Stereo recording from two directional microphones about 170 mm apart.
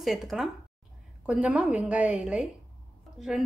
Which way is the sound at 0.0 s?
Centre (ahead or behind).